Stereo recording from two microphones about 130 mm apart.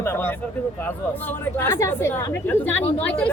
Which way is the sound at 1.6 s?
20° left (ahead or behind).